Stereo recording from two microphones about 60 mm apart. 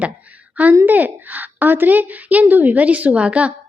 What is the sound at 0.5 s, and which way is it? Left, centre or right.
A woman's voice, right.